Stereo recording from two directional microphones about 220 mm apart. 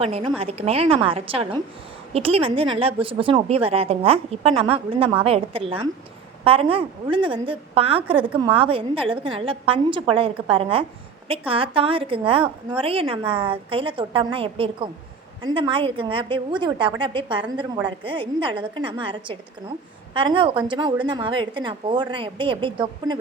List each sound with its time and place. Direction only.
0.0 s a woman's voice: 25° right (ahead or behind)